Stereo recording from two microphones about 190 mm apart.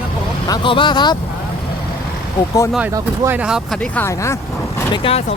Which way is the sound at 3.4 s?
5° right (ahead or behind).